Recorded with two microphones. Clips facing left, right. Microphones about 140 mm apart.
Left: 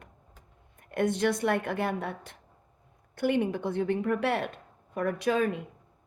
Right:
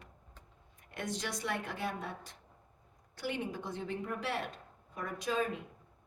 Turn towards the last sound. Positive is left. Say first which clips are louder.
# left 8 dB
turn(degrees=65)  # may be behind; listen again after turning